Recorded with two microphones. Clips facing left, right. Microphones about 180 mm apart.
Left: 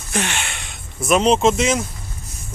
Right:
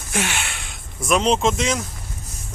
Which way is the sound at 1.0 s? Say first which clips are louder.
Left 3 dB; 5° left (ahead or behind).